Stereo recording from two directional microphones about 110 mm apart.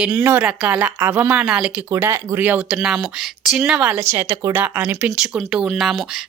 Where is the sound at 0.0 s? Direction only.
15° right (ahead or behind).